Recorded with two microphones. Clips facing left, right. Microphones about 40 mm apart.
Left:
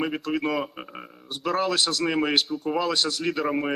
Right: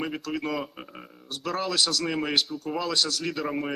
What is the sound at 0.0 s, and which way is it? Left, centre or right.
A man's voice, centre.